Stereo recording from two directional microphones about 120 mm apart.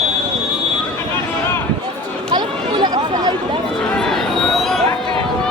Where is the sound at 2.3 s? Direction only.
35° right (ahead or behind).